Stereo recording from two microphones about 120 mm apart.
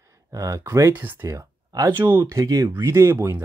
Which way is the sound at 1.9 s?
20° right (ahead or behind).